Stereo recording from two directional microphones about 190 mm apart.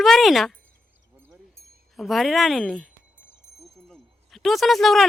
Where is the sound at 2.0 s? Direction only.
Centre (ahead or behind).